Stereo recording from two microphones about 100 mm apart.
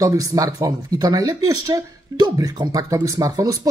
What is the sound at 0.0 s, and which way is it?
Speech, 35° right (ahead or behind).